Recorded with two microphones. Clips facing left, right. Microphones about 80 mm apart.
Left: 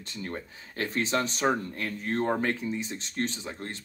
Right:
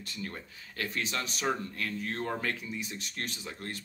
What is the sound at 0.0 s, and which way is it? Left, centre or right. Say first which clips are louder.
Speech: left 4 dB; left.